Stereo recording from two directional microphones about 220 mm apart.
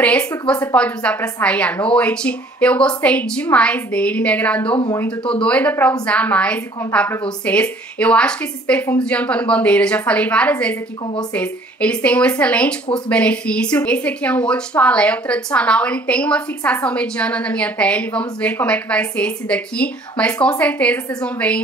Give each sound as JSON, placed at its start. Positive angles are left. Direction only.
{"t": 0.0, "sound": "a woman's voice", "side_deg": 5}
{"t": 4.7, "sound": "speech", "side_deg": 20}
{"t": 5.2, "sound": "a woman's voice", "side_deg": 5}